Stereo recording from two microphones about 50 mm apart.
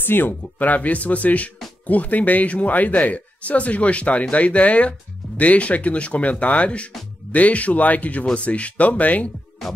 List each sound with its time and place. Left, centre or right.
0.0 s speech: left